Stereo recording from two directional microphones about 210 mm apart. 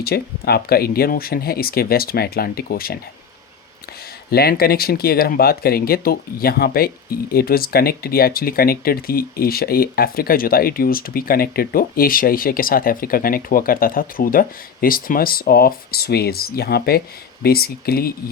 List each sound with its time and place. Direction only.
0.0 s speech: 50° left (ahead or behind)
4.3 s speech: 45° left (ahead or behind)